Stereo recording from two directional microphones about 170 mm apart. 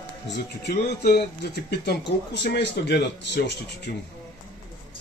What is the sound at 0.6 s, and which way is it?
Speech, 70° left (ahead or behind).